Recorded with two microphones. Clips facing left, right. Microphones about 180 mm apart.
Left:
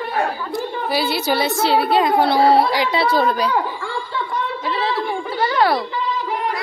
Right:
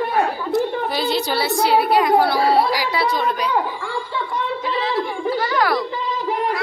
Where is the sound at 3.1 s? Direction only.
35° left (ahead or behind).